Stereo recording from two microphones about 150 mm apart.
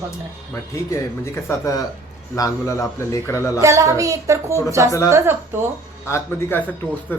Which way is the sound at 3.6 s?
20° right (ahead or behind).